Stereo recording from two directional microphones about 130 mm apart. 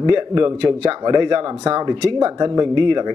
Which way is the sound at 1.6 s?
30° right (ahead or behind).